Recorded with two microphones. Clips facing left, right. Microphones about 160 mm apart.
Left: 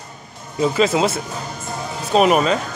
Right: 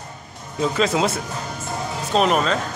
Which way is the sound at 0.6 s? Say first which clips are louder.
Left 3 dB; 5° left (ahead or behind).